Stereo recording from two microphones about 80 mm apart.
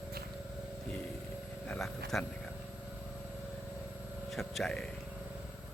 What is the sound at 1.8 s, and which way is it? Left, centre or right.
Speech, centre.